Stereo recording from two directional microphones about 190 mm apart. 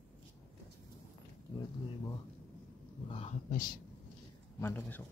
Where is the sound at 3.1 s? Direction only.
35° left (ahead or behind).